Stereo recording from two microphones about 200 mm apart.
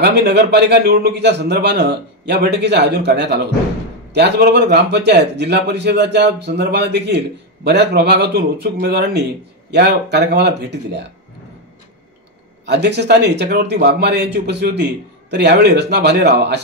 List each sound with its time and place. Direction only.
0.0 s speech: 55° right (ahead or behind)
12.6 s speech: 60° right (ahead or behind)